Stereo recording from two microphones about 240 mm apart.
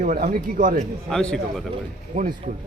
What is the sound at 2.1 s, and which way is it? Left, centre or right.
Speech, right.